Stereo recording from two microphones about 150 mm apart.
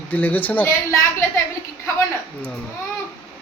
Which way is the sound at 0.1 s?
10° left (ahead or behind).